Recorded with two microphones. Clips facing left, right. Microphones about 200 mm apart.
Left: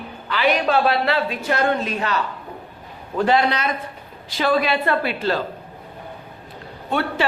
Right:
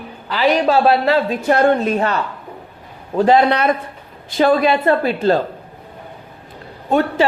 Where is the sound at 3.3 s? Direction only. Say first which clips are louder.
Right 6 dB; 55° right (ahead or behind).